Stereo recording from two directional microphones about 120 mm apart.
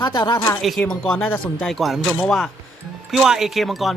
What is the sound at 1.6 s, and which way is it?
Speech, centre (ahead or behind).